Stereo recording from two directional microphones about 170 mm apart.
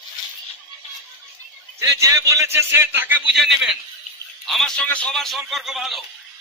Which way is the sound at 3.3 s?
Centre (ahead or behind).